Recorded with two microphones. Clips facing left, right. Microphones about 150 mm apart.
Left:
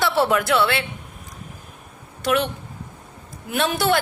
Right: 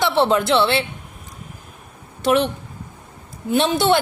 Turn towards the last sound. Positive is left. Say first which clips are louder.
# right 4 dB
turn(degrees=-25)  # may be behind; listen again after turning